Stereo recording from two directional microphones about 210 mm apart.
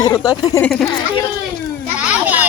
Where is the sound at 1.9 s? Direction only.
10° right (ahead or behind).